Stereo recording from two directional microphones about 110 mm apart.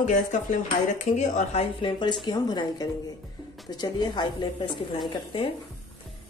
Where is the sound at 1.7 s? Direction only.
45° left (ahead or behind).